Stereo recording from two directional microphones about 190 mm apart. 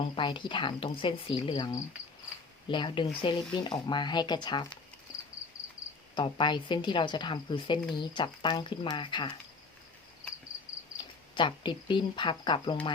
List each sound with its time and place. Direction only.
0.0 s a woman's voice: 25° left (ahead or behind)
6.1 s a woman's voice: 25° left (ahead or behind)
10.9 s speech: 25° left (ahead or behind)